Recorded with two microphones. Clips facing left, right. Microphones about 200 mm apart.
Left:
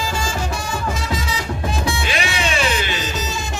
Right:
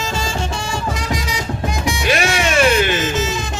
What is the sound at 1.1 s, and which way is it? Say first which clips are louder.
Music: right 2 dB; 15° right (ahead or behind).